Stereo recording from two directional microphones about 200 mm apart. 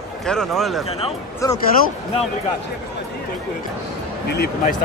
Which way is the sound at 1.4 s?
15° left (ahead or behind).